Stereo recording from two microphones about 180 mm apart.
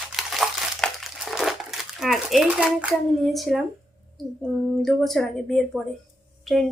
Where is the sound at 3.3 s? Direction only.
Centre (ahead or behind).